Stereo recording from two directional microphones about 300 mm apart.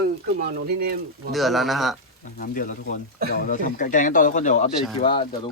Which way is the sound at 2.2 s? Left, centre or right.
Left.